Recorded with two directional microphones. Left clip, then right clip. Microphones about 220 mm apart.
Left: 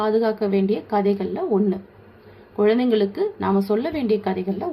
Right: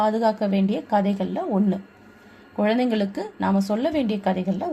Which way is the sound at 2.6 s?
40° right (ahead or behind).